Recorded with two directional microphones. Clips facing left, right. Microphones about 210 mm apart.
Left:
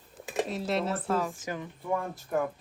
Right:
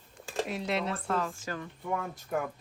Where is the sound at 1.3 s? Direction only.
20° left (ahead or behind).